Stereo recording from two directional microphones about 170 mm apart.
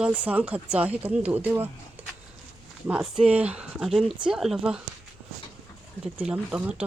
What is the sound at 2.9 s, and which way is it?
Speech, 5° right (ahead or behind).